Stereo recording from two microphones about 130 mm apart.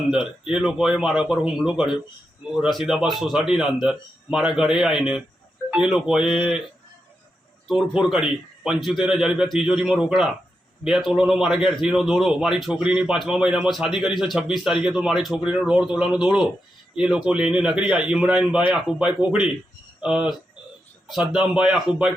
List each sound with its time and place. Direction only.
0.1 s a man's voice: 5° right (ahead or behind)
7.7 s a man's voice: 5° right (ahead or behind)